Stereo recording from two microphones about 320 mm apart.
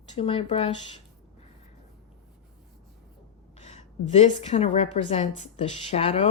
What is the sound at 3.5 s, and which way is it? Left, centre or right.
A woman's voice, left.